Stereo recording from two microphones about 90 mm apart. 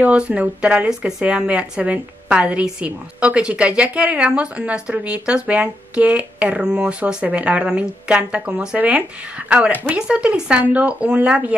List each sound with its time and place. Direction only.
0.0 s speech: 15° right (ahead or behind)